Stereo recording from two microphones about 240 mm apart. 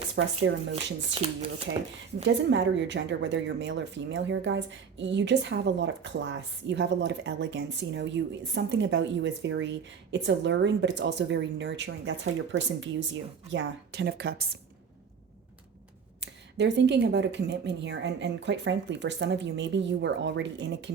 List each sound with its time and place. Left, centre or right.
0.2 s speech: right
1.1 s speech: right
2.2 s speech: right
16.2 s speech: right